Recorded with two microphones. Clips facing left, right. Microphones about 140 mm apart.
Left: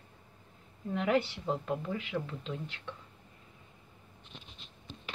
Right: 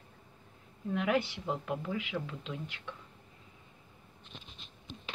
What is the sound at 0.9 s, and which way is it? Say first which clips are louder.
Speech: left 1 dB; 5° right (ahead or behind).